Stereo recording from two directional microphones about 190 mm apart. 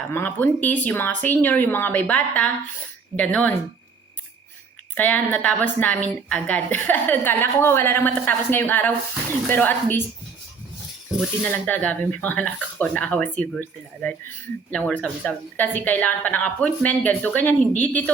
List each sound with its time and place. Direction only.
0.1 s a woman's voice: 10° left (ahead or behind)
4.9 s a woman's voice: 10° left (ahead or behind)
11.4 s a woman's voice: 10° left (ahead or behind)